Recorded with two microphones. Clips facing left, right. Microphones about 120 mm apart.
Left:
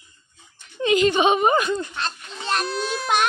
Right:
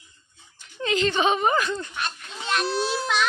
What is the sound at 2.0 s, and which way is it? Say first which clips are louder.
Children playing: left 2 dB; 40° left (ahead or behind).